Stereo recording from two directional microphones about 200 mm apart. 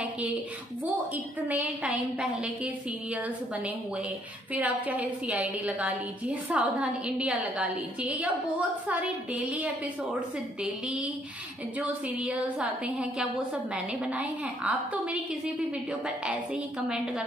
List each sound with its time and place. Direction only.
1.1 s a woman's voice: 5° right (ahead or behind)
4.6 s a woman's voice: 5° right (ahead or behind)
12.3 s a woman's voice: 5° right (ahead or behind)
16.8 s a woman's voice: 5° right (ahead or behind)